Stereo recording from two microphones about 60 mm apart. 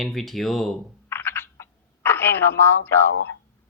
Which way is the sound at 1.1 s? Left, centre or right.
Left.